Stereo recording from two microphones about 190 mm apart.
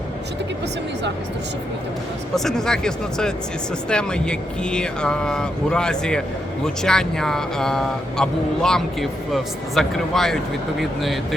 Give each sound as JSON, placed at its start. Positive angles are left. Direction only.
{"t": 2.3, "sound": "speech", "side_deg": 0}